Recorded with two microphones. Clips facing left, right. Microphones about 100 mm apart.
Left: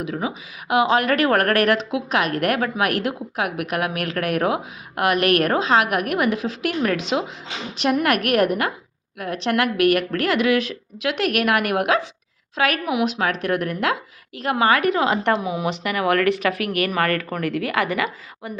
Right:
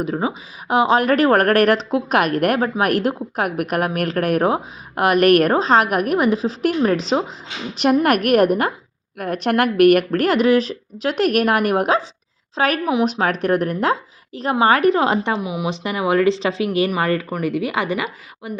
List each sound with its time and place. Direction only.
0.0 s speech: 35° right (ahead or behind)
2.4 s a woman's voice: 35° right (ahead or behind)
15.3 s speech: 10° right (ahead or behind)
15.7 s speech: 25° right (ahead or behind)